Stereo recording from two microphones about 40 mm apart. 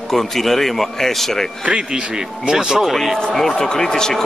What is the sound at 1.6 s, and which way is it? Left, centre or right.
Speech, right.